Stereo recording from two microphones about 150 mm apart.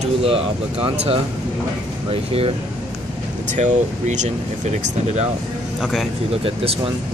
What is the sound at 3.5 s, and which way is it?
Speech, 55° right (ahead or behind).